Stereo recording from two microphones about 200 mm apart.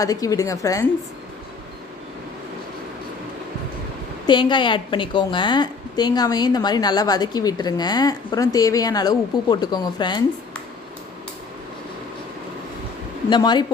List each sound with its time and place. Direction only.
0.0 s a woman's voice: 15° left (ahead or behind)
4.3 s a woman's voice: 25° left (ahead or behind)
13.3 s a woman's voice: 20° left (ahead or behind)